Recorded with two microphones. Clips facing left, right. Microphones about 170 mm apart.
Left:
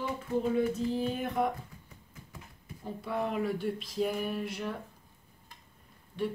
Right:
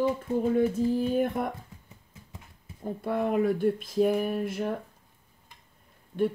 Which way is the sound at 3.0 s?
55° right (ahead or behind).